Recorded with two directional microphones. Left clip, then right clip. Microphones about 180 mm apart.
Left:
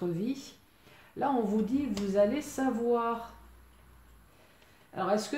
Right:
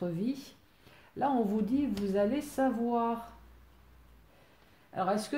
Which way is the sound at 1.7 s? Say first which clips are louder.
Left 3 dB; 50° right (ahead or behind).